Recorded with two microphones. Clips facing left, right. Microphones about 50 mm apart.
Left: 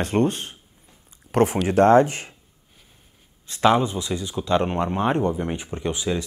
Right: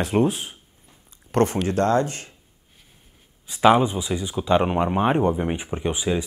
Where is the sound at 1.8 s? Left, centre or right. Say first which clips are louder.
Left 7 dB; left.